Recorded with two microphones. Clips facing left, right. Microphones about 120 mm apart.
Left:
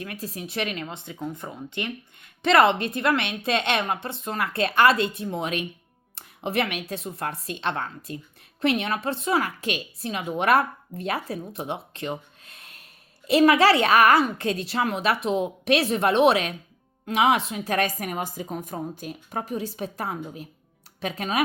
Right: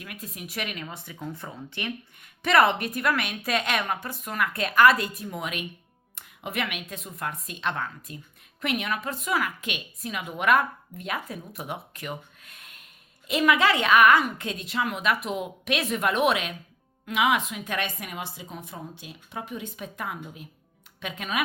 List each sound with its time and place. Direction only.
0.0 s a woman's voice: 30° left (ahead or behind)